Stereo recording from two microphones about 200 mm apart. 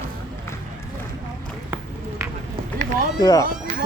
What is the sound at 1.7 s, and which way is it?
Run, 10° right (ahead or behind).